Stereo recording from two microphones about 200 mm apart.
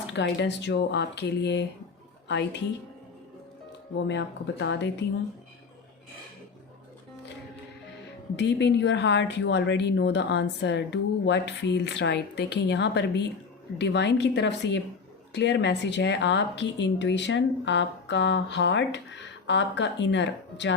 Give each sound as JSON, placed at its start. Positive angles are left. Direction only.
{"t": 0.1, "sound": "a woman's voice", "side_deg": 60}
{"t": 4.0, "sound": "a woman's voice", "side_deg": 60}
{"t": 8.4, "sound": "a woman's voice", "side_deg": 60}